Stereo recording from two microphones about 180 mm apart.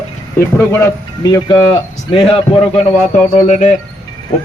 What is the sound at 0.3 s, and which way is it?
Speech, 15° left (ahead or behind).